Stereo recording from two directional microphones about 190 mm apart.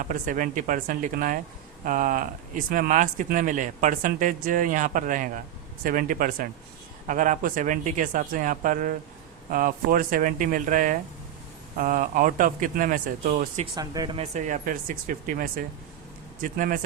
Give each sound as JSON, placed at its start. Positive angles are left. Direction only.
{"t": 0.0, "sound": "speech", "side_deg": -45}
{"t": 13.7, "sound": "speech", "side_deg": -20}
{"t": 14.2, "sound": "speech", "side_deg": -40}